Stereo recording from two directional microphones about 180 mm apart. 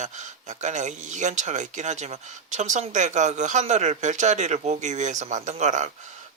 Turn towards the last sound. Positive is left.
turn(degrees=-40)  # may be behind; listen again after turning